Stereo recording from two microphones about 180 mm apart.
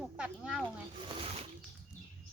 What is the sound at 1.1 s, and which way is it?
Music, 35° right (ahead or behind).